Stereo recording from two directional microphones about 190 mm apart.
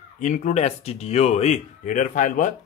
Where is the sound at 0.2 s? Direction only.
40° left (ahead or behind).